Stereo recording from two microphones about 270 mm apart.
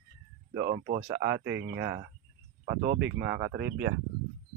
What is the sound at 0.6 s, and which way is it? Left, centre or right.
Speech, right.